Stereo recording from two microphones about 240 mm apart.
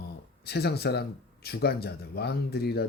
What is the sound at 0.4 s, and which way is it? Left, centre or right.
Speech, left.